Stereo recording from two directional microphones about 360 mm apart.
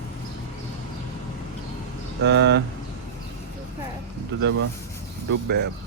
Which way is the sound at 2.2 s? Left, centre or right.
Right.